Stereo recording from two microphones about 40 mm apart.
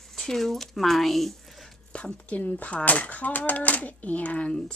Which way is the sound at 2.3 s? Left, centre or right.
Left.